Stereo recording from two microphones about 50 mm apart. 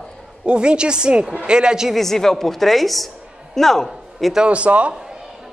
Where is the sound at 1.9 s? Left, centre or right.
Centre.